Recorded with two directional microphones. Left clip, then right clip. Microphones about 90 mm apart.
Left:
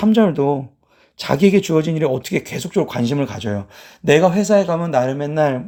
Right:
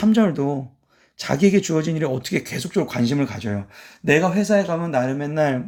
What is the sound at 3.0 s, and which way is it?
Speech, 30° left (ahead or behind).